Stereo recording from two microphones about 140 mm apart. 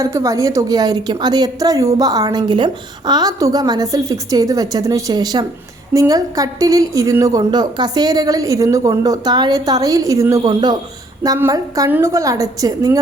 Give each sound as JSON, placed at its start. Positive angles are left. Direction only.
{"t": 0.0, "sound": "a woman's voice", "side_deg": -20}